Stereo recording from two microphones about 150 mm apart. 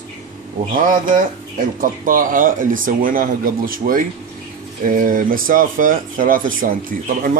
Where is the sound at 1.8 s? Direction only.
65° right (ahead or behind).